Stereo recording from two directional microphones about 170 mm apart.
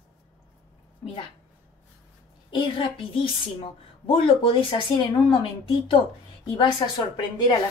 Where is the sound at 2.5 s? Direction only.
30° left (ahead or behind).